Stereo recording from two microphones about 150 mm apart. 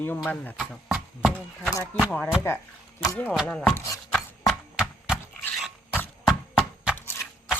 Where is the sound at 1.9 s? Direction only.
10° left (ahead or behind).